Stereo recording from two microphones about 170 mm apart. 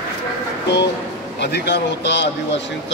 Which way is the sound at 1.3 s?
90° left.